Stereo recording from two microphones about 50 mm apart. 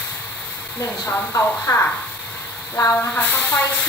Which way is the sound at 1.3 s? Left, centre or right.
Left.